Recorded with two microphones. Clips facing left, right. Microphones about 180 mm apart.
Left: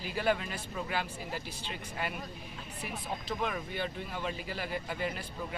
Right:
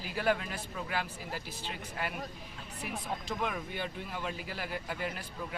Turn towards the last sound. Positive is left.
turn(degrees=-5)  # may be behind; listen again after turning